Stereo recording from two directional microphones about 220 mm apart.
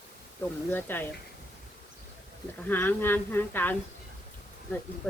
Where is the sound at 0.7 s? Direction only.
10° left (ahead or behind).